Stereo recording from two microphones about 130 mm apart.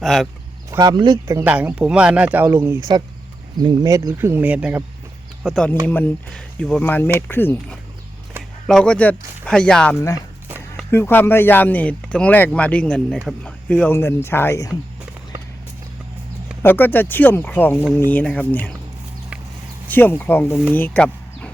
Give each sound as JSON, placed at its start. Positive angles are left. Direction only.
{"t": 0.0, "sound": "speech", "side_deg": 0}
{"t": 0.7, "sound": "speech", "side_deg": -30}
{"t": 1.5, "sound": "speech", "side_deg": -10}
{"t": 3.6, "sound": "speech", "side_deg": -35}
{"t": 5.8, "sound": "speech", "side_deg": 15}
{"t": 8.6, "sound": "speech", "side_deg": 5}
{"t": 9.9, "sound": "speech", "side_deg": 25}
{"t": 16.6, "sound": "speech", "side_deg": 15}
{"t": 19.9, "sound": "speech", "side_deg": 15}
{"t": 20.7, "sound": "a sound", "side_deg": 15}